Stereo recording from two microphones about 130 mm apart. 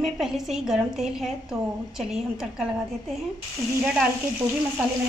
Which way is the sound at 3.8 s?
5° right (ahead or behind).